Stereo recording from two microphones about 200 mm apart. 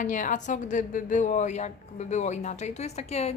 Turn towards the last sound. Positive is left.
turn(degrees=30)  # may be behind; listen again after turning